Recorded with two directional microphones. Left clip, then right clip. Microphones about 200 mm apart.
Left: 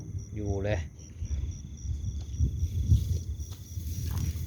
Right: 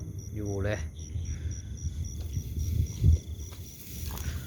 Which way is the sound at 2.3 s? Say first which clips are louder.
Left 3 dB; 20° right (ahead or behind).